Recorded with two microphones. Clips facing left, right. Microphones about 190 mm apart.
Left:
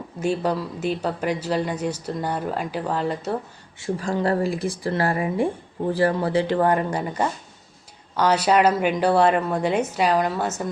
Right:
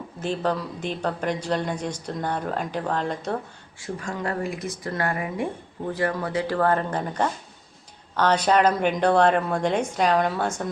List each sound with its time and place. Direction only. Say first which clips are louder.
0.2 s speech: left 3 dB; 10° left (ahead or behind)
3.8 s speech: left 6 dB; 30° left (ahead or behind)
6.6 s speech: left 2 dB; 15° left (ahead or behind)